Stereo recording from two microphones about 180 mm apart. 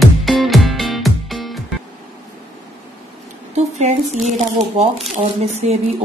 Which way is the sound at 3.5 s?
40° right (ahead or behind).